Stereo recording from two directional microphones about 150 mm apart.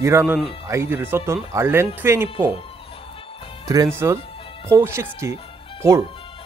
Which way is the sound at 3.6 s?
25° right (ahead or behind).